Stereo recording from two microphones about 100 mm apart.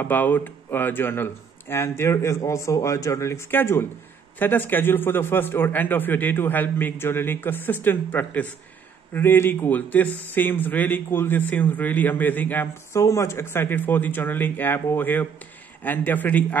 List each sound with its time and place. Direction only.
0.0 s a man's voice: 20° left (ahead or behind)